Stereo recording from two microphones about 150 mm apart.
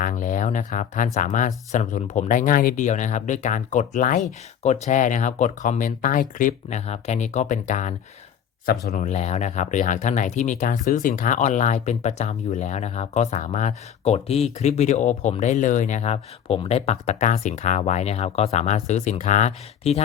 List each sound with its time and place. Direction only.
0.0 s speech: 60° left (ahead or behind)